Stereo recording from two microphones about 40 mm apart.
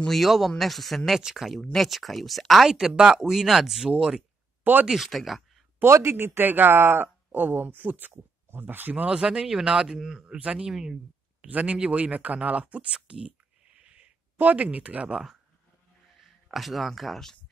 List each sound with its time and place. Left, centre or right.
0.1 s speech: centre
2.6 s speech: centre
4.8 s speech: centre
5.8 s speech: right
7.3 s speech: right
9.1 s speech: right
9.9 s speech: centre
10.2 s speech: right
10.7 s speech: centre
11.4 s speech: right
12.9 s whispering: right
14.3 s a sound: right
14.6 s speech: right
16.4 s speech: centre